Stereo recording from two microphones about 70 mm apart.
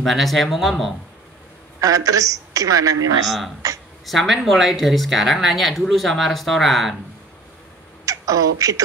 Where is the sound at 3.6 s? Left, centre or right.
Right.